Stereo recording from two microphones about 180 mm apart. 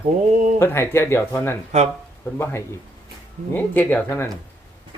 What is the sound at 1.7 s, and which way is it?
Speech, 40° right (ahead or behind).